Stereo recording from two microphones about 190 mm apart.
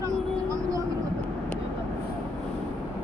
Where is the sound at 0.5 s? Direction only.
15° right (ahead or behind).